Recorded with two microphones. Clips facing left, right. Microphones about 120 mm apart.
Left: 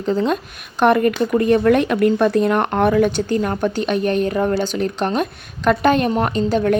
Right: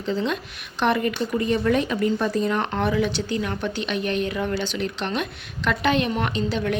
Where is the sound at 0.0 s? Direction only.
45° left (ahead or behind).